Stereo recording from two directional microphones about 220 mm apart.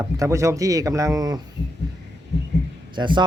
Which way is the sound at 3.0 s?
20° right (ahead or behind).